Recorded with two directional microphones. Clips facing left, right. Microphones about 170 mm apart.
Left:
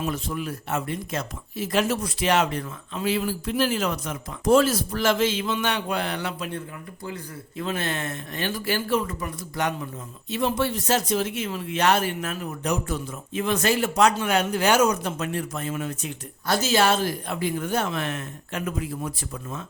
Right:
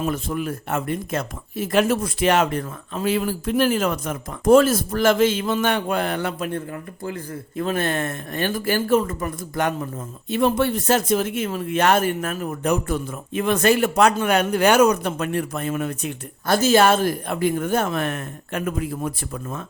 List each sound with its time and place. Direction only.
0.0 s speech: 50° right (ahead or behind)